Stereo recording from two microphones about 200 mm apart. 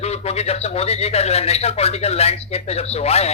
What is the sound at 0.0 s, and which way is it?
A man's voice, 30° left (ahead or behind).